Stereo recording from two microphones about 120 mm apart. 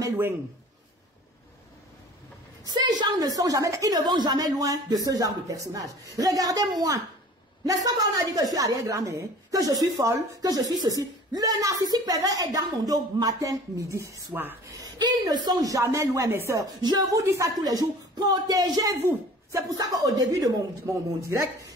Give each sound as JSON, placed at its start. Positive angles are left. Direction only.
{"t": 2.6, "sound": "speech", "side_deg": -35}
{"t": 14.8, "sound": "speech", "side_deg": -35}
{"t": 16.8, "sound": "speech", "side_deg": -35}